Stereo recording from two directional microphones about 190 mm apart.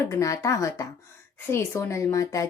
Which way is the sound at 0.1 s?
15° left (ahead or behind).